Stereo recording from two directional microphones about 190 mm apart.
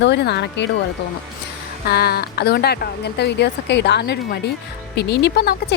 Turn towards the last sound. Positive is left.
turn(degrees=60)  # may be behind; listen again after turning